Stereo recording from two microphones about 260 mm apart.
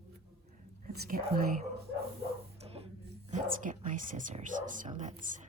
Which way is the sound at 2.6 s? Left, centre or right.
Right.